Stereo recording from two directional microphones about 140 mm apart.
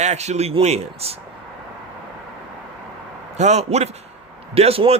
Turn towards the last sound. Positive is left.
turn(degrees=-45)  # may be behind; listen again after turning